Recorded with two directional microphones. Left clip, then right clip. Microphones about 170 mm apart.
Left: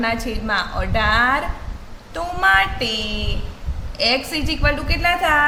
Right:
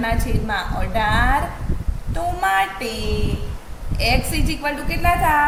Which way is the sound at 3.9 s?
25° left (ahead or behind).